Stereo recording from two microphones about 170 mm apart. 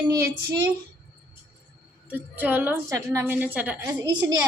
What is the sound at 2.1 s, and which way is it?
A woman's voice, 10° right (ahead or behind).